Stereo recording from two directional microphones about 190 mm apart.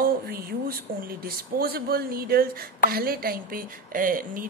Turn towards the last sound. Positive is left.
turn(degrees=-45)  # may be behind; listen again after turning